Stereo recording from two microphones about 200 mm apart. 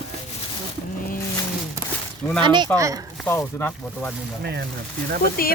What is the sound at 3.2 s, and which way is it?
Speech, 10° left (ahead or behind).